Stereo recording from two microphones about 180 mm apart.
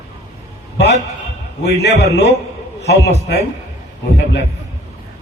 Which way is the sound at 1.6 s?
70° left (ahead or behind).